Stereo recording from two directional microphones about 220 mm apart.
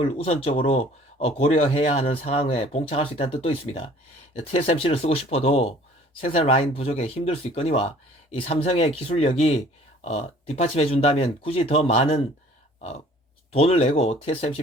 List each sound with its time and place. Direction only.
0.0 s speech: 25° left (ahead or behind)
13.5 s speech: 25° left (ahead or behind)